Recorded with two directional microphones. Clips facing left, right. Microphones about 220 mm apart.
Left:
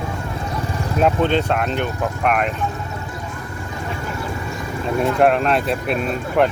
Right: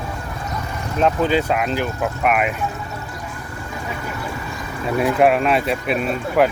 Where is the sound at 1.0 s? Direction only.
5° right (ahead or behind).